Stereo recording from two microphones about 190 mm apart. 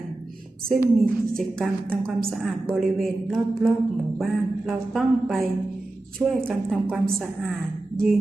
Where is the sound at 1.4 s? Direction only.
5° left (ahead or behind).